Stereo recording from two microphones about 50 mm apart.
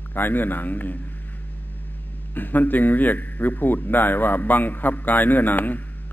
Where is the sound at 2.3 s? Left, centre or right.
Left.